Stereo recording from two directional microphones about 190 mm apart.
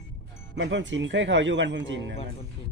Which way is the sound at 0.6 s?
70° right (ahead or behind).